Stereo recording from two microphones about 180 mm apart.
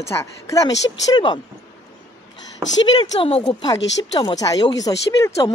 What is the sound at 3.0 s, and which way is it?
Speech, 25° left (ahead or behind).